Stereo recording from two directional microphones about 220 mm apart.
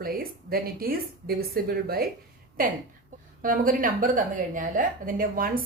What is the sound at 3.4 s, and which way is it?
A woman's voice, 40° right (ahead or behind).